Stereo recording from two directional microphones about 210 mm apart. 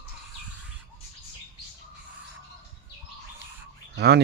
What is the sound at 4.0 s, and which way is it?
Speech, 55° right (ahead or behind).